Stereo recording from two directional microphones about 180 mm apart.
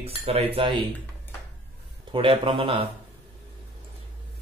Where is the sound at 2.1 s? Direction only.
30° right (ahead or behind).